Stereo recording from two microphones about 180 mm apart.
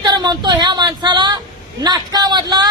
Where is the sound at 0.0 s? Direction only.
25° right (ahead or behind).